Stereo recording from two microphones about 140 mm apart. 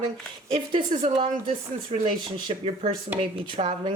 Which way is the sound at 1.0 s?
40° right (ahead or behind).